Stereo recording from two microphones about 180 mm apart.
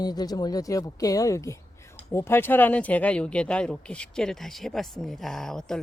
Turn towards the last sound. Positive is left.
turn(degrees=5)  # may be behind; listen again after turning